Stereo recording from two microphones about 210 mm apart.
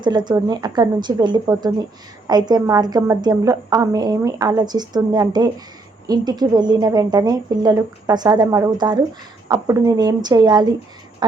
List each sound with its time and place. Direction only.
0.0 s a woman's voice: 20° right (ahead or behind)